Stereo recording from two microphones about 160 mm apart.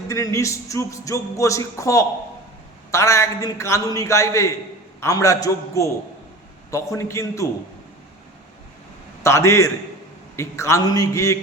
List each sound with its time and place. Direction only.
0.1 s speech: 20° left (ahead or behind)
9.2 s a man's voice: 15° left (ahead or behind)